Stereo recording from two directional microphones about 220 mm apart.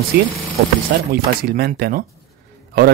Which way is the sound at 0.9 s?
45° right (ahead or behind).